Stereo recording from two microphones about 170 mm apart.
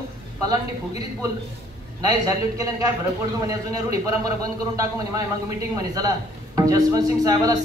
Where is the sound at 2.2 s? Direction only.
20° right (ahead or behind).